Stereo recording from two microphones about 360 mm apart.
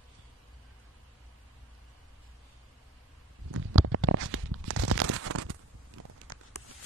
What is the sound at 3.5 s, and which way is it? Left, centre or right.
Tearing, right.